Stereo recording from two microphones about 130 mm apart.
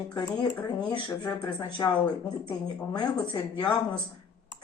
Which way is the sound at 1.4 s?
30° left (ahead or behind).